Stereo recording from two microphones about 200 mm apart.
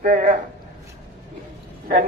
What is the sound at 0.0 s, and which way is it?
Speech, 40° right (ahead or behind).